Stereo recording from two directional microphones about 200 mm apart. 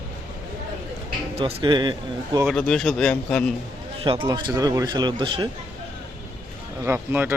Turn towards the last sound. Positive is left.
turn(degrees=-10)  # may be behind; listen again after turning